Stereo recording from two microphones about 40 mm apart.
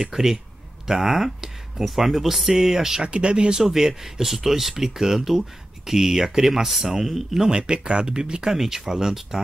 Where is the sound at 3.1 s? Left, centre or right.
Right.